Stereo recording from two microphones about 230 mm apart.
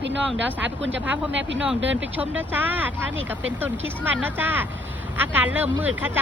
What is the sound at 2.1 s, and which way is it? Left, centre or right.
Speech, centre.